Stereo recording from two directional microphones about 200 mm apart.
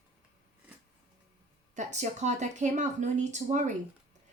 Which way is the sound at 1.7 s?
35° right (ahead or behind).